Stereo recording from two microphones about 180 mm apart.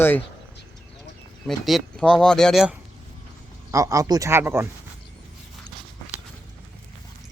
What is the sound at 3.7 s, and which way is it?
Speech, 20° right (ahead or behind).